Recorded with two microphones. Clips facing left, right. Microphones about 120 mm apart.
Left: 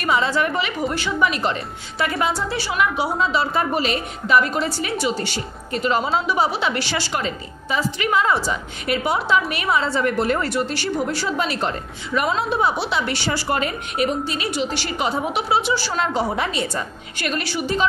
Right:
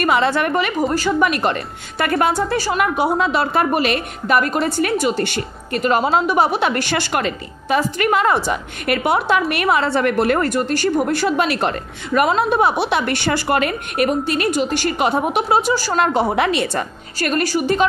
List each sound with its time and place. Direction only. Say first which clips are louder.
0.0 s a woman's voice: right 3 dB; 60° right (ahead or behind)
0.8 s a woman's voice: right 5 dB; 40° right (ahead or behind)
1.2 s a woman's voice: right 3 dB; 60° right (ahead or behind)
16.0 s a woman's voice: right 8 dB; 60° right (ahead or behind)
17.2 s a woman's voice: right 6 dB; 45° right (ahead or behind)